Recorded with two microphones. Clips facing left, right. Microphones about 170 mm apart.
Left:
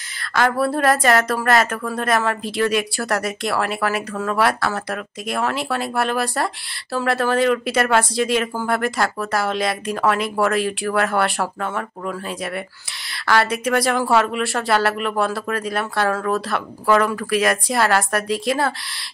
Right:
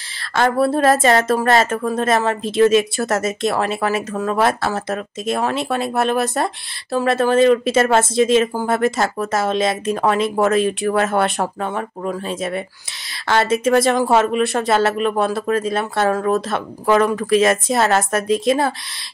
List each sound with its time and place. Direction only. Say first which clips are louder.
0.3 s a woman's voice: right 3 dB; 25° right (ahead or behind)